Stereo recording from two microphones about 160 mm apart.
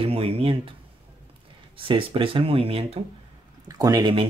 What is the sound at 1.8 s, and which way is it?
Speech, 35° right (ahead or behind).